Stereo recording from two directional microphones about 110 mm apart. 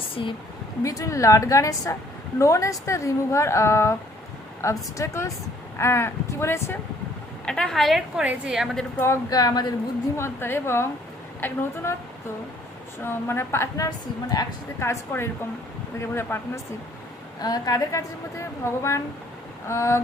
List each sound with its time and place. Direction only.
0.2 s speech: 45° left (ahead or behind)
0.8 s a woman's voice: 30° left (ahead or behind)
7.4 s a woman's voice: 5° left (ahead or behind)
9.3 s a woman's voice: 35° left (ahead or behind)
10.2 s a woman's voice: 20° left (ahead or behind)
13.0 s a woman's voice: 20° left (ahead or behind)
17.4 s a woman's voice: 35° left (ahead or behind)